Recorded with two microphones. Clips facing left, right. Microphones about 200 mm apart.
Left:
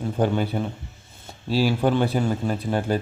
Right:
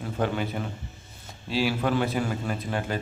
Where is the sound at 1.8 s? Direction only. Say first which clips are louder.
Left 4 dB; 30° left (ahead or behind).